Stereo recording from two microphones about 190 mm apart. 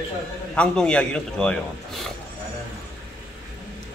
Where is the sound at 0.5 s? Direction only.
5° left (ahead or behind).